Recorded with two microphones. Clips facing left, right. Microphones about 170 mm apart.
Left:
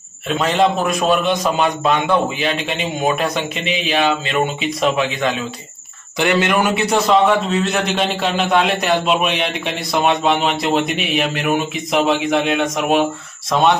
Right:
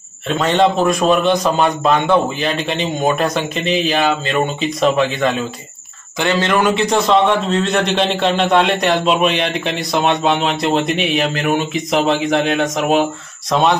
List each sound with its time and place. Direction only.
0.4 s a man's voice: centre (ahead or behind)
3.6 s speech: 35° right (ahead or behind)
4.6 s a man's voice: centre (ahead or behind)
6.2 s a man's voice: 15° left (ahead or behind)